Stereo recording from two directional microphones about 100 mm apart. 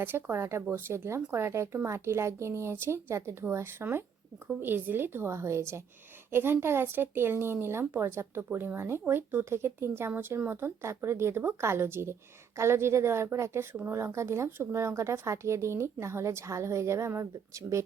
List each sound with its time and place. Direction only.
0.0 s speech: 20° right (ahead or behind)